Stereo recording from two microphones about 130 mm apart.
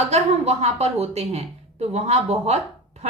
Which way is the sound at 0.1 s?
55° right (ahead or behind).